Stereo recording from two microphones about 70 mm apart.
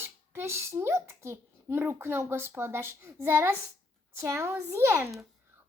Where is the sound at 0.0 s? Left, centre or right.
Right.